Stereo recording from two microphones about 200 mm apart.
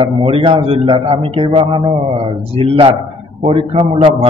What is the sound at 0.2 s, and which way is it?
A man's voice, 25° right (ahead or behind).